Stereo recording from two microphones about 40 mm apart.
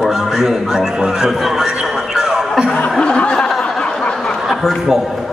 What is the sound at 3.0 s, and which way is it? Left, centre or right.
Snicker, left.